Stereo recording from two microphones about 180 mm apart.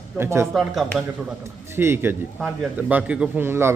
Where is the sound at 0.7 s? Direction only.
Centre (ahead or behind).